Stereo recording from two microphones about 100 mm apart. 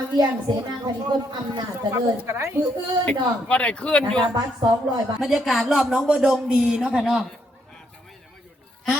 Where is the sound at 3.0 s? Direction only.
15° left (ahead or behind).